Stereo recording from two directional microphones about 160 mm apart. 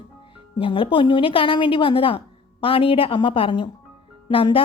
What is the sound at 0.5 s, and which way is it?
A woman's voice, 35° left (ahead or behind).